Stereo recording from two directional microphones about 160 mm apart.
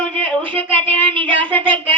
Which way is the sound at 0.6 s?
10° left (ahead or behind).